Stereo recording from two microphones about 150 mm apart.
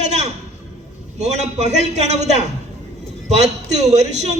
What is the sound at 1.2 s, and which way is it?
A woman's voice, 50° right (ahead or behind).